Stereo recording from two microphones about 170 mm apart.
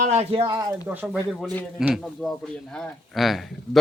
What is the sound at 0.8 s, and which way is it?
A man's voice, 10° right (ahead or behind).